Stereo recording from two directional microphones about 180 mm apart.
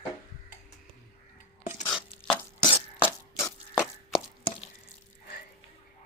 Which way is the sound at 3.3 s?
15° left (ahead or behind).